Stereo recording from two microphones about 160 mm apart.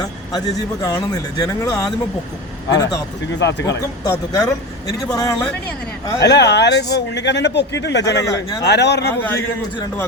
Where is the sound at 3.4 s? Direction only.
90° left.